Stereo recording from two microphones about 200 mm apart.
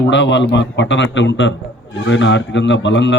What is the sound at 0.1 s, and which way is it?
A man's voice, 60° left (ahead or behind).